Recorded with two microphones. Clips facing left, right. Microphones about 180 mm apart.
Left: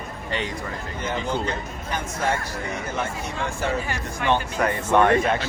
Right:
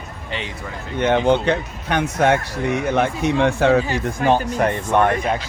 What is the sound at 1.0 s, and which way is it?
Speech, 70° right (ahead or behind).